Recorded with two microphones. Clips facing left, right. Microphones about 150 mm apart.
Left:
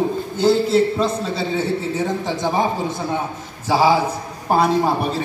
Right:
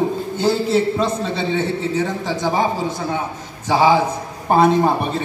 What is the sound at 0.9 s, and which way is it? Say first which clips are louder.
Speech: right 1 dB; centre (ahead or behind).